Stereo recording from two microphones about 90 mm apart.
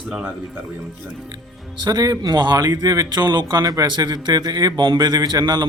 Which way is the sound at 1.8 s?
45° right (ahead or behind).